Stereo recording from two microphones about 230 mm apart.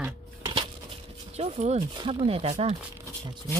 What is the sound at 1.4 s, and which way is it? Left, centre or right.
Speech, right.